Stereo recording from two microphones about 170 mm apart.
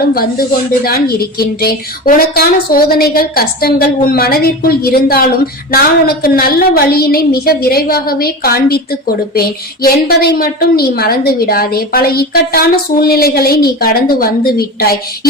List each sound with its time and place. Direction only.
0.0 s a woman's voice: 60° left (ahead or behind)